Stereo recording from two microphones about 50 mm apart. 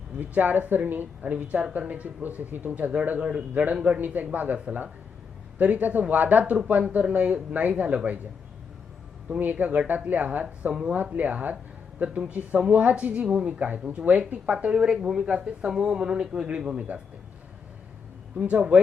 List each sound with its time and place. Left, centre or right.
0.2 s speech: right
1.2 s speech: right
9.4 s speech: right
18.3 s speech: right